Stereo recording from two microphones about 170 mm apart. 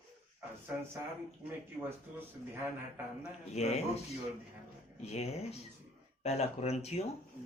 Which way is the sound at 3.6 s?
40° left (ahead or behind).